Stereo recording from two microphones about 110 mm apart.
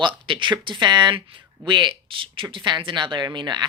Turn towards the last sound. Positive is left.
turn(degrees=-40)  # may be behind; listen again after turning